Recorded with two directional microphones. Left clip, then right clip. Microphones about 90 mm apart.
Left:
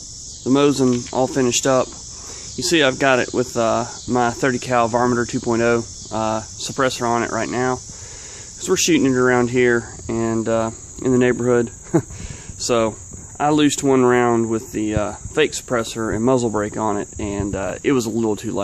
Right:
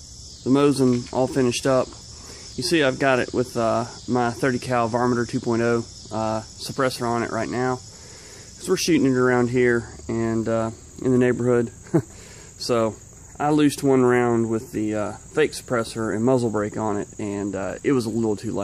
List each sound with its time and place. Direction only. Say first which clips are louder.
0.5 s cricket: left 3 dB; 10° left (ahead or behind)
6.9 s speech: left 5 dB; 25° left (ahead or behind)
8.6 s speech: left 3 dB; 15° left (ahead or behind)